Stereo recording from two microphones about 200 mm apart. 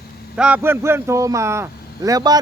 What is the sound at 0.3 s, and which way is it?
A man's voice, 5° right (ahead or behind).